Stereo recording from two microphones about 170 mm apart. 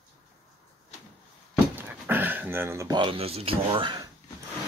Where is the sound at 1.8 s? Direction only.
10° right (ahead or behind); by 4.0 s 30° right (ahead or behind).